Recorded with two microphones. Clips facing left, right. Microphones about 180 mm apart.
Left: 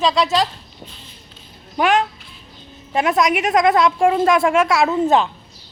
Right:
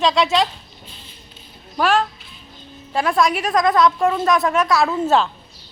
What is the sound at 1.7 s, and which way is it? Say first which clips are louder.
A child's voice: left 1 dB; 15° left (ahead or behind).